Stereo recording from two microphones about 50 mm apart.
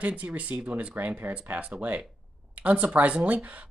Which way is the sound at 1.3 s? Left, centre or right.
Right.